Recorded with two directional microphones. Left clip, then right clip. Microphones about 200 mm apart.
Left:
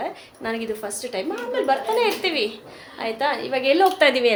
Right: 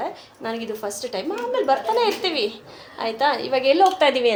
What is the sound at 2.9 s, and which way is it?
Speech, 25° right (ahead or behind).